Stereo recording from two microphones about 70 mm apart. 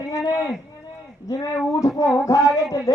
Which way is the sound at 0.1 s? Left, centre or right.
Left.